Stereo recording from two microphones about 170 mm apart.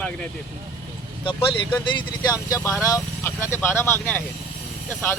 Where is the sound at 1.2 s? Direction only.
30° left (ahead or behind).